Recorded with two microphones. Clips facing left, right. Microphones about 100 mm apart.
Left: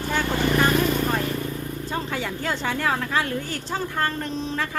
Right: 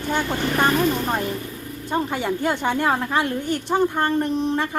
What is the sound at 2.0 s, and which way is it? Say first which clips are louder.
A woman's voice: right 5 dB; 15° right (ahead or behind).